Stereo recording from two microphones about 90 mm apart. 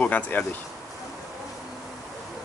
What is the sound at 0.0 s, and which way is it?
Speech, 20° left (ahead or behind).